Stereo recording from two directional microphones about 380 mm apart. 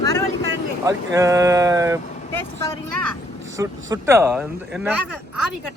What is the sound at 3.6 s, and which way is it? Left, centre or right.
Speech, centre.